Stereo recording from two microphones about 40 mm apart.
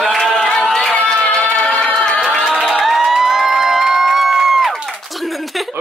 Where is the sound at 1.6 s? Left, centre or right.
Left.